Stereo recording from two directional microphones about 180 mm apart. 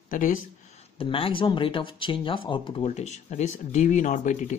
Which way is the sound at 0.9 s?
30° left (ahead or behind).